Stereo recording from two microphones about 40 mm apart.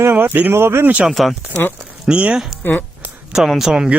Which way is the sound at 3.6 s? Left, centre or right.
Centre.